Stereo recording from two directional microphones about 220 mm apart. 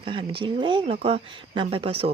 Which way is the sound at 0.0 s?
25° right (ahead or behind).